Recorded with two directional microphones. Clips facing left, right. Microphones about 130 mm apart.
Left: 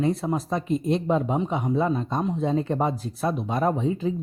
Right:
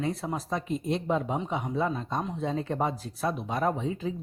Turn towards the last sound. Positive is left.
turn(degrees=30)  # may be behind; listen again after turning